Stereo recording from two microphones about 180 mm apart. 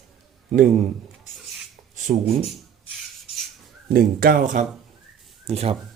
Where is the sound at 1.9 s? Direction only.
40° right (ahead or behind).